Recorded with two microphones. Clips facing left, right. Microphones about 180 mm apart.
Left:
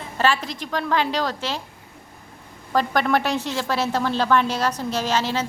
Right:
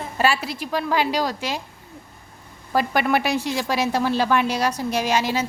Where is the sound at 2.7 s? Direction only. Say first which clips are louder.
Even; 10° right (ahead or behind).